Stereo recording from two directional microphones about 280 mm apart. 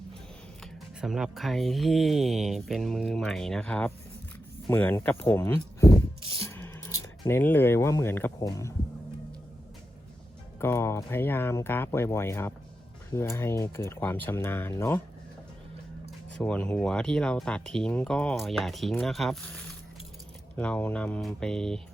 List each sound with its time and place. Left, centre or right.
0.6 s speech: centre
10.6 s speech: centre
16.4 s speech: centre